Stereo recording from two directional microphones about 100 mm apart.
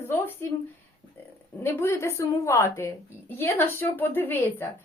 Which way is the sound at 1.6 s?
25° left (ahead or behind).